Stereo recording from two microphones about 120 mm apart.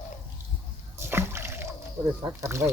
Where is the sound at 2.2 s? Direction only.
25° right (ahead or behind).